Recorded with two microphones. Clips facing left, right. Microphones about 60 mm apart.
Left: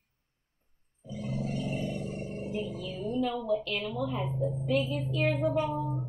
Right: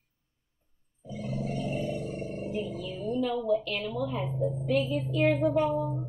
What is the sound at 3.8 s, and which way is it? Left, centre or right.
A child's voice, centre.